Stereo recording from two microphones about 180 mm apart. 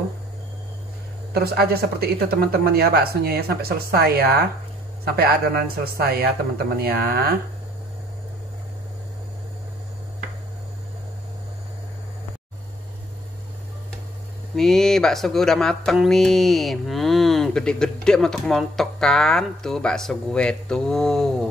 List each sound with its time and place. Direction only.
1.3 s speech: 60° right (ahead or behind)
14.5 s speech: centre (ahead or behind)